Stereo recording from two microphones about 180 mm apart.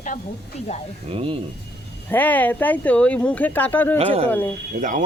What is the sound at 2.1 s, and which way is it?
Speech, 10° left (ahead or behind).